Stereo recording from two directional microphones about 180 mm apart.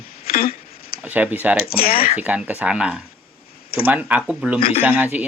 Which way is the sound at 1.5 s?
55° left (ahead or behind).